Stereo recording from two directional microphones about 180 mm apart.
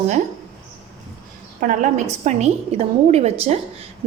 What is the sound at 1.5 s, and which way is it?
A woman's voice, 45° right (ahead or behind).